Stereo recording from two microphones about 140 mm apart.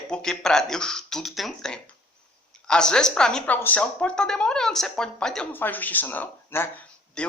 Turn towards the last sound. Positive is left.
turn(degrees=5)  # may be behind; listen again after turning